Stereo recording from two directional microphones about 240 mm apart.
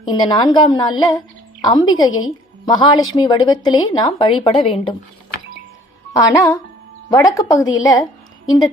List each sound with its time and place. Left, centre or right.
0.1 s a woman's voice: centre
6.1 s a woman's voice: centre